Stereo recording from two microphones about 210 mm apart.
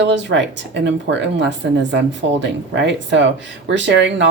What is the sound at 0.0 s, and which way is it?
Speech, 55° right (ahead or behind).